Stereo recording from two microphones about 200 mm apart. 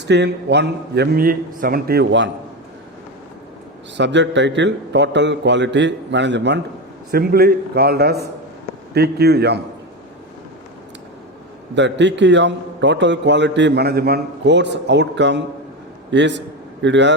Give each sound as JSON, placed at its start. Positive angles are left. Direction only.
{"t": 0.0, "sound": "a man's voice", "side_deg": -60}
{"t": 3.9, "sound": "a man's voice", "side_deg": -60}
{"t": 7.1, "sound": "a man's voice", "side_deg": -50}
{"t": 11.7, "sound": "a man's voice", "side_deg": -60}